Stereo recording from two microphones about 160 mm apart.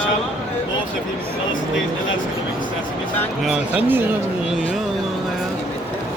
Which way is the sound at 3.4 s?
5° right (ahead or behind).